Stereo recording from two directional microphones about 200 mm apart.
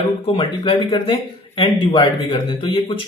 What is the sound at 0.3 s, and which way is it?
Speech, 25° left (ahead or behind).